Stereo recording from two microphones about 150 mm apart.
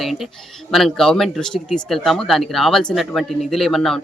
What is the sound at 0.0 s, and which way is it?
Speech, centre (ahead or behind).